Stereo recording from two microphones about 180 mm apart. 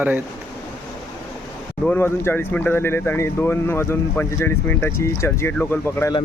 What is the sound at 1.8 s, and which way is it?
Speech, 10° left (ahead or behind).